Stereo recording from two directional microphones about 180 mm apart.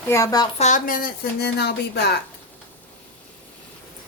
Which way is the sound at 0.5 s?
40° left (ahead or behind).